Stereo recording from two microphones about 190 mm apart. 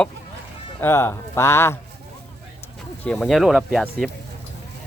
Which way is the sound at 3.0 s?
5° left (ahead or behind).